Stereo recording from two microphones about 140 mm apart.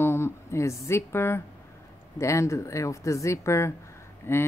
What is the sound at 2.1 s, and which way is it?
Speech, 20° left (ahead or behind).